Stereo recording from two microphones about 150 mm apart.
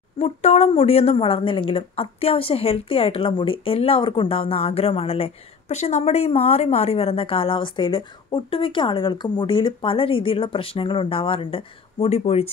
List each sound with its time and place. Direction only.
0.2 s speech: 45° left (ahead or behind)